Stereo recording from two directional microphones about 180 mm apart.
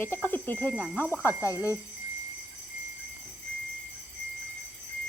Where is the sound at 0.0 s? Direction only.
10° left (ahead or behind).